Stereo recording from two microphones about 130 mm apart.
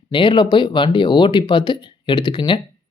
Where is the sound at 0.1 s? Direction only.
40° left (ahead or behind).